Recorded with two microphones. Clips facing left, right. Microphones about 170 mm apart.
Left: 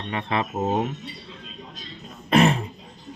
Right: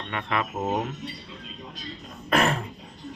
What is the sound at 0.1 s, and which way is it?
Speech, 25° left (ahead or behind).